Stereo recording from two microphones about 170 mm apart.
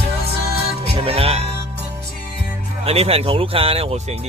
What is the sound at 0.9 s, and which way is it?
Speech, 35° right (ahead or behind).